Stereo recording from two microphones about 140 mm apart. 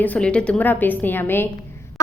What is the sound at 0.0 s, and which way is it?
A woman's voice, 10° left (ahead or behind).